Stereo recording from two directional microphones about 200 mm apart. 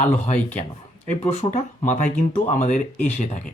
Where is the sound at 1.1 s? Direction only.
35° left (ahead or behind).